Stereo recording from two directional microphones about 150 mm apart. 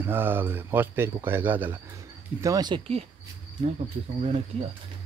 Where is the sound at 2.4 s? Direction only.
25° right (ahead or behind).